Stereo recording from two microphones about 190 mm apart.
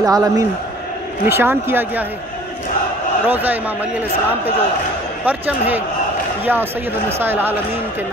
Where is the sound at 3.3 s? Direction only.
10° right (ahead or behind).